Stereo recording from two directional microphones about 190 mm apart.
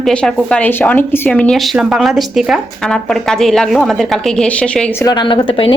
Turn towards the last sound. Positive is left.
turn(degrees=30)  # may be behind; listen again after turning